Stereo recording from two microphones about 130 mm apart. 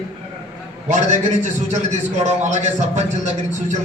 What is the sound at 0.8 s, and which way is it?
A man's voice, 65° right (ahead or behind).